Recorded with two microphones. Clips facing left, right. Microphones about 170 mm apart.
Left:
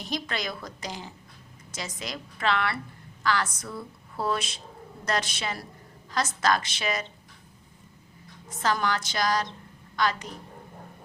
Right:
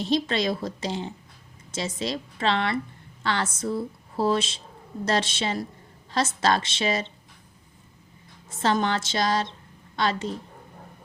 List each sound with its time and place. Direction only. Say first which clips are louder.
0.0 s a woman's voice: right 8 dB; 25° right (ahead or behind)
8.4 s a woman's voice: right 3 dB; 25° right (ahead or behind)